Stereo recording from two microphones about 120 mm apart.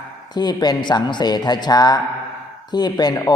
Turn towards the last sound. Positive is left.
turn(degrees=35)  # may be behind; listen again after turning